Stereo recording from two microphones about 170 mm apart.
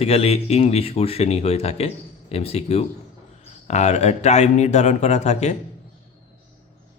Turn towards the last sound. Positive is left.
turn(degrees=40)  # may be behind; listen again after turning